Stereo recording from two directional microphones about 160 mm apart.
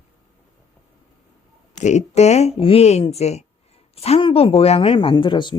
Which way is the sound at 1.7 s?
45° left (ahead or behind).